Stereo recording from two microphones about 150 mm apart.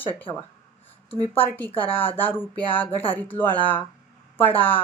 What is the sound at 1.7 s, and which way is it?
Speech, 35° left (ahead or behind).